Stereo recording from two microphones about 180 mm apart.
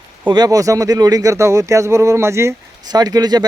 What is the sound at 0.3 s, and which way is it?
Speech, 20° right (ahead or behind).